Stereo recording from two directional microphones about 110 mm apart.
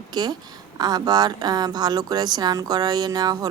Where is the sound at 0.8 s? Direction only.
40° right (ahead or behind).